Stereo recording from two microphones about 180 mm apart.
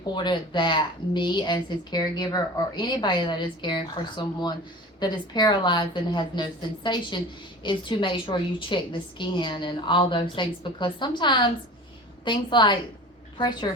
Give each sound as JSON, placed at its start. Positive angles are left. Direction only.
{"t": 0.1, "sound": "speech", "side_deg": 25}